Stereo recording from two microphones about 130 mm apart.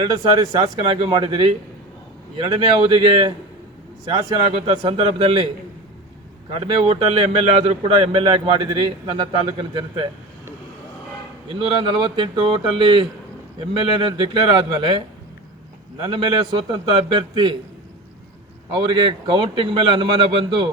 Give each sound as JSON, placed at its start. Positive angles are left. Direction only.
{"t": 0.0, "sound": "a man's voice", "side_deg": -40}
{"t": 4.4, "sound": "speech", "side_deg": -50}
{"t": 6.5, "sound": "a man's voice", "side_deg": -45}
{"t": 11.4, "sound": "a man's voice", "side_deg": -40}
{"t": 18.7, "sound": "a man's voice", "side_deg": -35}